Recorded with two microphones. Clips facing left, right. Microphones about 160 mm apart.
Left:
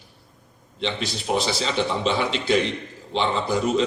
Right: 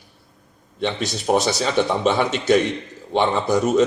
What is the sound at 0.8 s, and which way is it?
Speech, 50° right (ahead or behind).